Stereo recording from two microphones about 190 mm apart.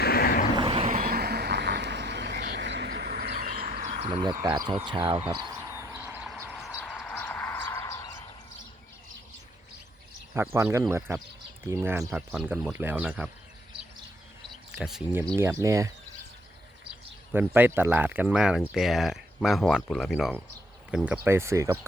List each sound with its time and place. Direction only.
0.0 s vehicle: 55° left (ahead or behind)
0.5 s vehicle: 25° right (ahead or behind)
0.9 s vehicle: 55° right (ahead or behind)
2.5 s a sound: 65° right (ahead or behind); by 4.1 s 45° right (ahead or behind)
4.1 s speech: 25° right (ahead or behind)
5.5 s vehicle: 15° right (ahead or behind)
6.4 s a sound: 5° right (ahead or behind); by 8.1 s 15° left (ahead or behind)
10.3 s speech: 15° right (ahead or behind)
14.5 s speech: centre (ahead or behind)
15.4 s speech: 15° right (ahead or behind)
17.3 s speech: 10° right (ahead or behind)